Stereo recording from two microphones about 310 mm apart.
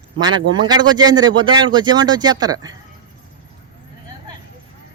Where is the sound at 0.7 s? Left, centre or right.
Centre.